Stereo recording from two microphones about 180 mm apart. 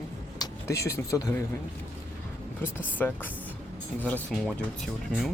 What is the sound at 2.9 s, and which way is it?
Speech, 10° left (ahead or behind).